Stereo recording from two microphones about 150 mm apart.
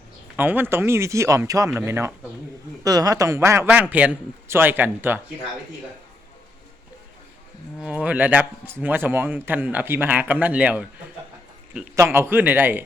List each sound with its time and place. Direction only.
0.3 s a man's voice: 15° right (ahead or behind)
7.8 s a man's voice: 10° right (ahead or behind)
11.9 s a man's voice: 20° right (ahead or behind)